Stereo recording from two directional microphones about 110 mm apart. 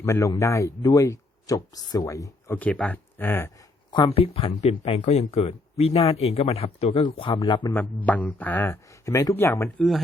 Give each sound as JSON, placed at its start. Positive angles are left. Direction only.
{"t": 0.0, "sound": "speech", "side_deg": 25}
{"t": 2.5, "sound": "speech", "side_deg": 15}
{"t": 3.9, "sound": "speech", "side_deg": 55}
{"t": 7.7, "sound": "speech", "side_deg": 15}
{"t": 9.6, "sound": "speech", "side_deg": 0}